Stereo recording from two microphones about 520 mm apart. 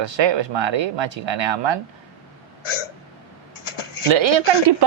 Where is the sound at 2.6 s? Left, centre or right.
Left.